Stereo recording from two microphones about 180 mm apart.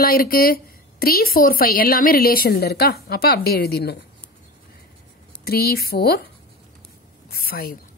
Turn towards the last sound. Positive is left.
turn(degrees=55)  # may be behind; listen again after turning